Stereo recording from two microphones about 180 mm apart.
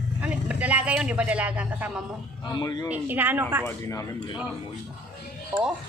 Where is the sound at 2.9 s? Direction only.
10° right (ahead or behind).